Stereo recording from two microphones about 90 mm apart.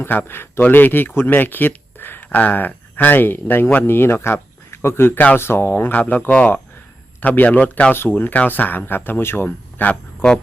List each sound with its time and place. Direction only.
0.0 s a man's voice: 25° left (ahead or behind)